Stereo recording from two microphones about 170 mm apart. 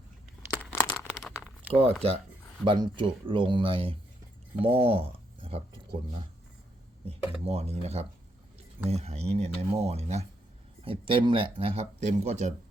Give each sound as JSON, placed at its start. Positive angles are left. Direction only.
{"t": 0.7, "sound": "a sound", "side_deg": 10}
{"t": 1.7, "sound": "speech", "side_deg": -35}
{"t": 7.4, "sound": "speech", "side_deg": -35}